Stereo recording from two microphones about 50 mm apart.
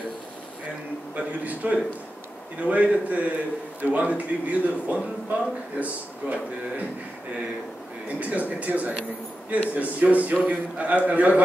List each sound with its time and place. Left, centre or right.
1.1 s a man's voice: right
8.2 s a man's voice: right